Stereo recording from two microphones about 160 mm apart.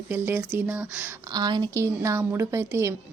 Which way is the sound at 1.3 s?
25° right (ahead or behind).